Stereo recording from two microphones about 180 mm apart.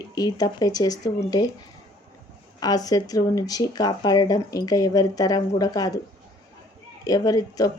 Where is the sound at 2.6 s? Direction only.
20° left (ahead or behind).